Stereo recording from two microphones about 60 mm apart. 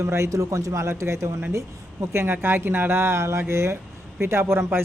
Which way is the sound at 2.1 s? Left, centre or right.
Right.